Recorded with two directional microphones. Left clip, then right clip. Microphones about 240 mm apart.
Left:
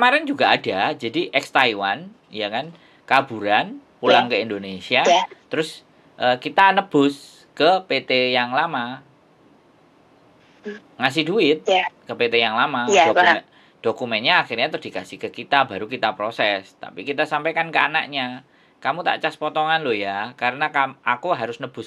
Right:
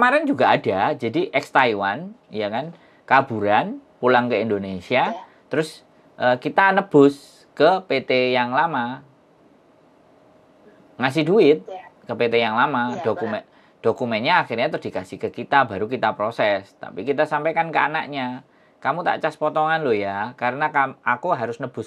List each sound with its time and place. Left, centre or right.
0.0 s speech: right
11.0 s speech: right
11.6 s speech: left
12.1 s speech: right